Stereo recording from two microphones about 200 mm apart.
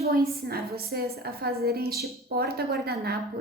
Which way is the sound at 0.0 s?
50° right (ahead or behind).